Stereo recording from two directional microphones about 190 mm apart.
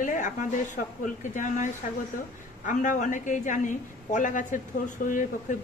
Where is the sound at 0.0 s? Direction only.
40° left (ahead or behind).